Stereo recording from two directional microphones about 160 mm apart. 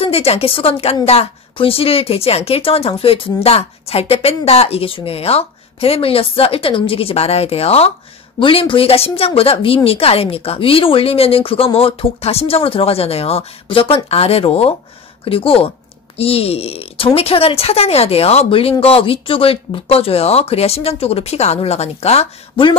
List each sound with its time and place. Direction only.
0.0 s speech: 40° left (ahead or behind)